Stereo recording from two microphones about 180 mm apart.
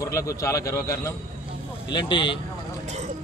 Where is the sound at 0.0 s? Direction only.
15° left (ahead or behind).